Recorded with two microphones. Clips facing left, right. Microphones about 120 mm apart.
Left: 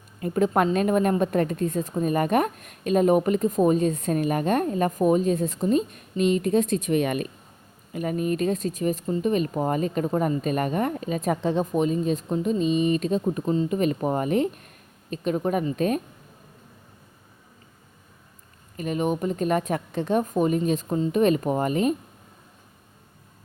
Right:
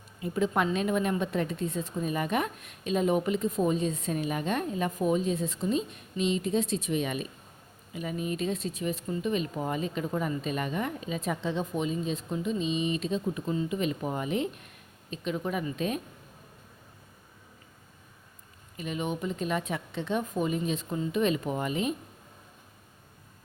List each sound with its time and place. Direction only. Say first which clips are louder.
0.2 s a woman's voice: left 6 dB; 50° left (ahead or behind)
18.8 s a woman's voice: left 7 dB; 45° left (ahead or behind)